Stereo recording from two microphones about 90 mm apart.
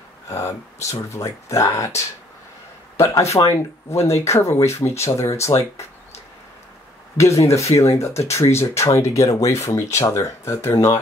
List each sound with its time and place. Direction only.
0.3 s speech: 35° left (ahead or behind)
7.2 s speech: 35° left (ahead or behind)